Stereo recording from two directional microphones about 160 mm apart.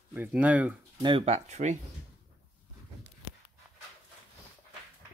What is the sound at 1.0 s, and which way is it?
Speech, 30° right (ahead or behind).